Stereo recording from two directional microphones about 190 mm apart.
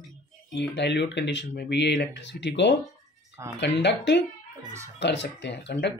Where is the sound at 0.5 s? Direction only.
65° left (ahead or behind).